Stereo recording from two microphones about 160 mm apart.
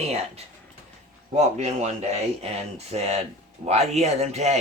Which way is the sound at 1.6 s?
45° right (ahead or behind).